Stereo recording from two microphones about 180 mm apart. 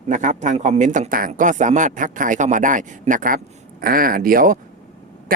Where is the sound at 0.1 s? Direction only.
45° right (ahead or behind).